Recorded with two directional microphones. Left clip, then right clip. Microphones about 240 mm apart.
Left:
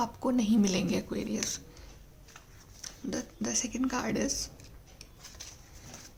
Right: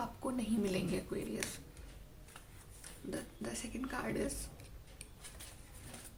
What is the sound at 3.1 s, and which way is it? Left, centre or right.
A woman's voice, left.